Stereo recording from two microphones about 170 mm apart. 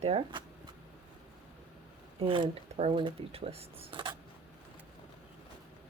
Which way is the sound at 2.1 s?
30° right (ahead or behind).